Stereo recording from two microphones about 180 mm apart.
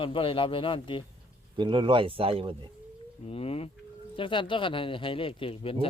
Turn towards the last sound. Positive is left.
turn(degrees=30)  # may be behind; listen again after turning